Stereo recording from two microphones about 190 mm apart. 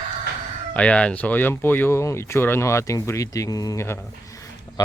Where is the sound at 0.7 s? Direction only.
5° left (ahead or behind).